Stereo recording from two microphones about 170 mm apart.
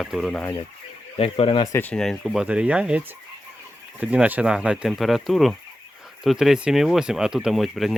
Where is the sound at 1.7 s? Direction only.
10° left (ahead or behind); by 3.0 s 5° right (ahead or behind).